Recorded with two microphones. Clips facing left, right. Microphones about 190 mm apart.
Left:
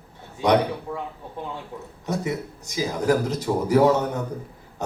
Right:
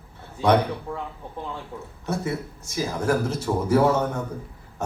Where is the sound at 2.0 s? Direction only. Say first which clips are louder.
Left 1 dB; 15° left (ahead or behind).